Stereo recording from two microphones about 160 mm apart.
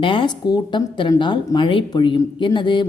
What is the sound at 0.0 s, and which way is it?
A woman's voice, 30° left (ahead or behind).